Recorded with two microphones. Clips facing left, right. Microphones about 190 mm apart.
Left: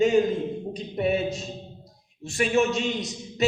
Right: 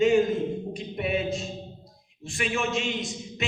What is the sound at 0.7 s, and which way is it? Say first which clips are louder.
Music: left 3 dB; 40° left (ahead or behind).